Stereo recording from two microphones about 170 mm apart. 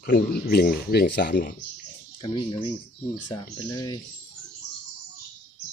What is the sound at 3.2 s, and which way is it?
Speech, 20° left (ahead or behind).